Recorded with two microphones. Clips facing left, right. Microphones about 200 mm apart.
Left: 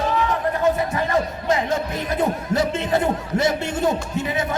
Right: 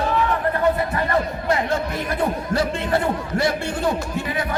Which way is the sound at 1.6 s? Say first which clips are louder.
Even; 20° left (ahead or behind).